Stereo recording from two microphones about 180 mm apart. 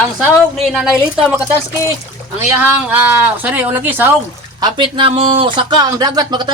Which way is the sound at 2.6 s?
10° right (ahead or behind).